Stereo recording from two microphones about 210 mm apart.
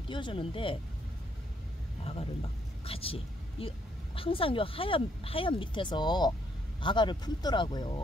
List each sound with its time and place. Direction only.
0.1 s a woman's voice: 25° left (ahead or behind)
2.8 s a woman's voice: 25° left (ahead or behind)